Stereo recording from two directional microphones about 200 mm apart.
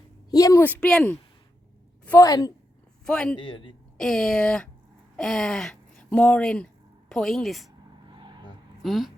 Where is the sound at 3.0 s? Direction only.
5° left (ahead or behind).